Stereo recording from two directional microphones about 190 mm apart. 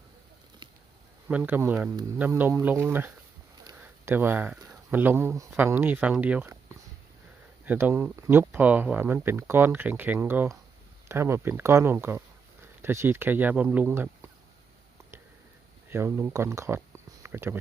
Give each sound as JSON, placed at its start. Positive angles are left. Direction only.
{"t": 1.3, "sound": "speech", "side_deg": -10}
{"t": 3.6, "sound": "a sound", "side_deg": -20}
{"t": 4.1, "sound": "speech", "side_deg": -10}
{"t": 7.6, "sound": "speech", "side_deg": -10}
{"t": 15.9, "sound": "speech", "side_deg": -15}